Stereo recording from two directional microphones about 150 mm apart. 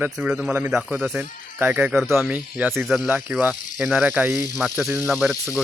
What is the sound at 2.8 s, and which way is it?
Speech, centre (ahead or behind).